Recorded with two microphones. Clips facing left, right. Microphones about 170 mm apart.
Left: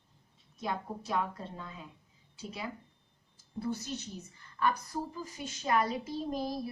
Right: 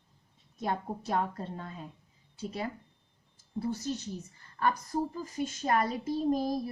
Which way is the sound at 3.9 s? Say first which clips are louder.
Right 5 dB; 40° right (ahead or behind).